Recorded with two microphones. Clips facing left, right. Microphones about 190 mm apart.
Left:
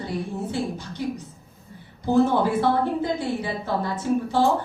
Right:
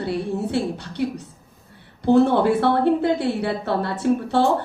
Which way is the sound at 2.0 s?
70° right (ahead or behind).